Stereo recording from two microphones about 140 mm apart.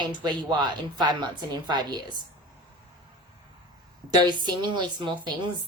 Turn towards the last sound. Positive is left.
turn(degrees=-35)  # may be behind; listen again after turning